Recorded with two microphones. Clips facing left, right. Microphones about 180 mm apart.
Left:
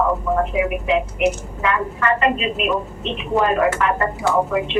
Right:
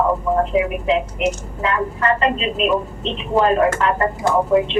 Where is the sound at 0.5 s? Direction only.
30° right (ahead or behind).